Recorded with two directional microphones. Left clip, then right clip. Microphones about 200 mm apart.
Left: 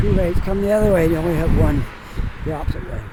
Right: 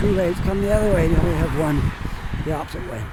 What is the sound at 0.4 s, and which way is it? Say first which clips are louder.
Speech: left 3 dB; 15° left (ahead or behind).